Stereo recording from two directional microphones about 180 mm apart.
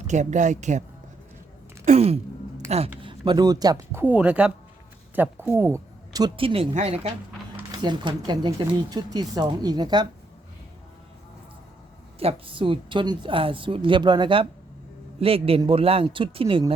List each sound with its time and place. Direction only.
0.1 s speech: 40° right (ahead or behind)
1.8 s a sound: 35° right (ahead or behind)
2.6 s speech: 35° right (ahead or behind)
12.2 s speech: 30° right (ahead or behind)